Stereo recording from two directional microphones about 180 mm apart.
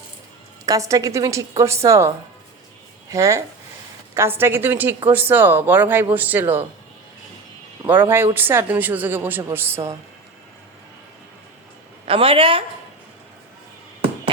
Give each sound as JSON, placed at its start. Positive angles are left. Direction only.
{"t": 0.6, "sound": "a man's voice", "side_deg": -20}
{"t": 7.9, "sound": "a man's voice", "side_deg": -10}
{"t": 12.0, "sound": "a woman's voice", "side_deg": -30}